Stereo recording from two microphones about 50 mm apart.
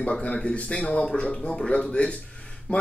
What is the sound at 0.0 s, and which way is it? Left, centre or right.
Speech, left.